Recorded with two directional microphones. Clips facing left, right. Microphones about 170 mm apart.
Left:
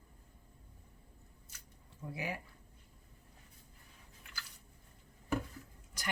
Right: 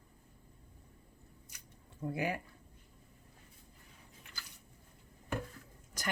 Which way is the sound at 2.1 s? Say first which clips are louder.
Right 5 dB; 55° right (ahead or behind).